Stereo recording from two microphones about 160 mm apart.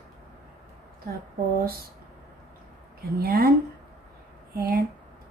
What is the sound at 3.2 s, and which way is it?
Speech, 70° right (ahead or behind).